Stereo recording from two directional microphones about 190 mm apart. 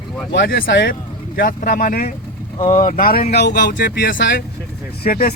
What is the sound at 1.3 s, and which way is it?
Speech, 50° left (ahead or behind).